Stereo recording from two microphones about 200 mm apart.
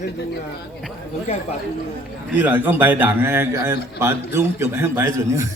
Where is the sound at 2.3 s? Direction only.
10° right (ahead or behind).